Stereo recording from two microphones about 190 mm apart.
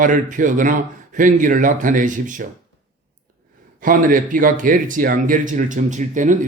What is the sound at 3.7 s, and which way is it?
A man's voice, 45° right (ahead or behind).